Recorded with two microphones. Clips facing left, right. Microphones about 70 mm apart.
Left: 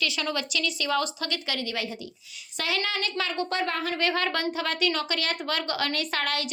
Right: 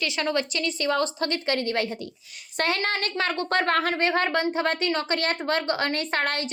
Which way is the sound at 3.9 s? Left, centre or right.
Right.